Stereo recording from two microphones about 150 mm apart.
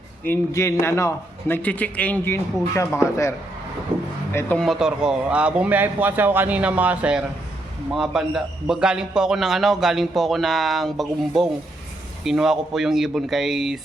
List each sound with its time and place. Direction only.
0.3 s a man's voice: 20° left (ahead or behind)
4.5 s a man's voice: centre (ahead or behind)